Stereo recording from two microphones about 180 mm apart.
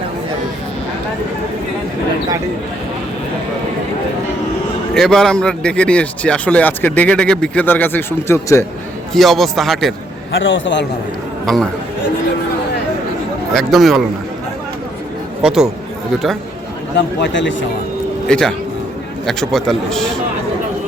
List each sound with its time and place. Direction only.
4.9 s speech: 5° left (ahead or behind)
9.1 s speech: centre (ahead or behind)
10.3 s a man's voice: 90° left
11.4 s speech: centre (ahead or behind)
13.5 s speech: centre (ahead or behind)
15.4 s speech: 5° right (ahead or behind)
17.2 s a man's voice: 90° left
18.3 s speech: 5° left (ahead or behind)